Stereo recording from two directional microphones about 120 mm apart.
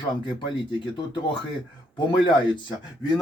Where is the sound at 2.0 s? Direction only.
40° left (ahead or behind).